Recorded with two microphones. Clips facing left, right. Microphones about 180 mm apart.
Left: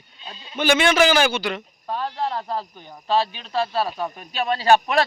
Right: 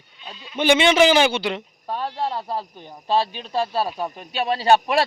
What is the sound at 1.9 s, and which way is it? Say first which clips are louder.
Speech: even; 10° right (ahead or behind).